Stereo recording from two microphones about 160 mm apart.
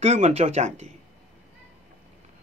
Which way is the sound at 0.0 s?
40° right (ahead or behind).